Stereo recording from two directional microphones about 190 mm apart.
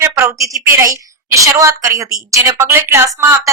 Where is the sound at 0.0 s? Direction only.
15° right (ahead or behind).